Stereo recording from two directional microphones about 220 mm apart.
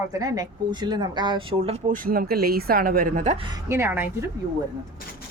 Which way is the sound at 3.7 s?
10° right (ahead or behind).